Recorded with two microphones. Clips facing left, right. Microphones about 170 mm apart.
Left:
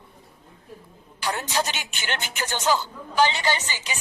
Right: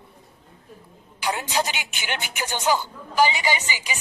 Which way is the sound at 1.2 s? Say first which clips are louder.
Right 1 dB; 15° right (ahead or behind).